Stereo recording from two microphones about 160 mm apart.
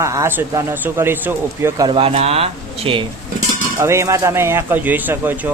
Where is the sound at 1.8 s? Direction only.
35° right (ahead or behind).